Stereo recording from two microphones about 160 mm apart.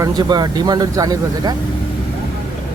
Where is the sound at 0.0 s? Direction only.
25° right (ahead or behind).